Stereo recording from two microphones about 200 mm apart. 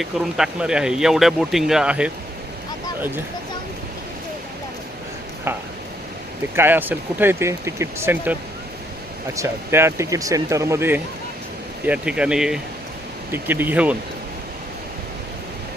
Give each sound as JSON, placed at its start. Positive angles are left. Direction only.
{"t": 0.0, "sound": "speech", "side_deg": -5}
{"t": 5.5, "sound": "a sound", "side_deg": -10}
{"t": 6.6, "sound": "speech", "side_deg": -10}